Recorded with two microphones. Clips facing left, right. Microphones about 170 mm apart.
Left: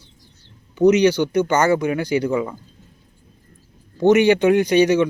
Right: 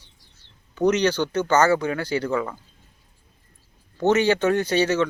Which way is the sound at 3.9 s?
15° left (ahead or behind).